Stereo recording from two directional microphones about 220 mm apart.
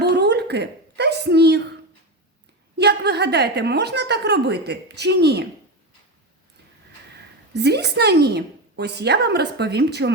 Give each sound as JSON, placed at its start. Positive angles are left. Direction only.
{"t": 0.0, "sound": "a sound", "side_deg": -50}
{"t": 2.7, "sound": "a woman's voice", "side_deg": -50}
{"t": 7.5, "sound": "a woman's voice", "side_deg": -50}